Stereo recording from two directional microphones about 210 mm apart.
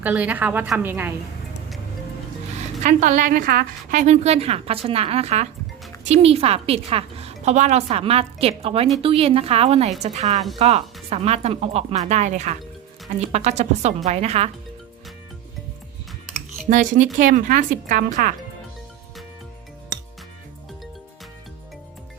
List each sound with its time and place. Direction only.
0.0 s a woman's voice: 5° right (ahead or behind)
2.8 s speech: 35° right (ahead or behind)
4.0 s a woman's voice: 30° right (ahead or behind)
16.6 s speech: 35° right (ahead or behind)